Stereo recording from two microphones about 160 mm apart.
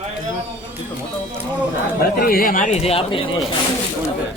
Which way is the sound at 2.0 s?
70° left (ahead or behind).